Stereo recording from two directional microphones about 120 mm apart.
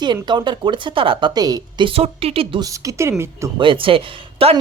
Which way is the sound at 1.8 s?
55° right (ahead or behind).